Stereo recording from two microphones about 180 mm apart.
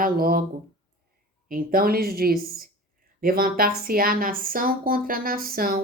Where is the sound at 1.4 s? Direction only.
55° right (ahead or behind).